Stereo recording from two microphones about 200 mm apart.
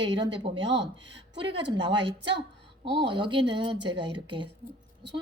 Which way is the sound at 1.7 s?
25° right (ahead or behind).